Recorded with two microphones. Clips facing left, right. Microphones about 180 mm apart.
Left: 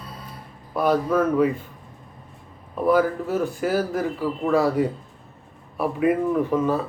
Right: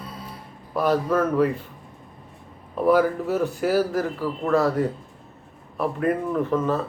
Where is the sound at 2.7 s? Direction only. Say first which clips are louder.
Right 1 dB; 5° right (ahead or behind).